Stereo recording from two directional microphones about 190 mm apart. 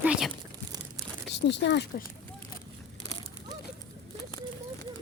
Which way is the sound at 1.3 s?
65° left (ahead or behind).